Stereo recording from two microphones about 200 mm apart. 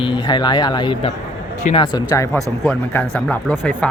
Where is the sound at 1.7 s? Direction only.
40° left (ahead or behind).